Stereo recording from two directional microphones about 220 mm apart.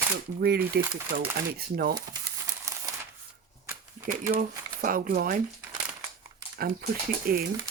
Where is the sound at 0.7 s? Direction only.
45° right (ahead or behind).